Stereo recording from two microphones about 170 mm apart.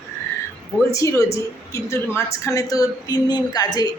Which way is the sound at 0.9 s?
20° left (ahead or behind).